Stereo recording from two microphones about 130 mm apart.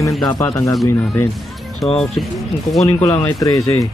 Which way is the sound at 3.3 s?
25° left (ahead or behind).